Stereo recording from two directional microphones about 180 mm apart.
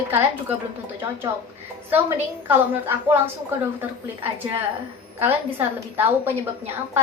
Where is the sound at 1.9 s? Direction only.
10° right (ahead or behind).